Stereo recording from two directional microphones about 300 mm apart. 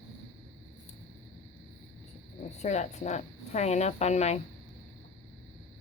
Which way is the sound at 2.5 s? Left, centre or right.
Left.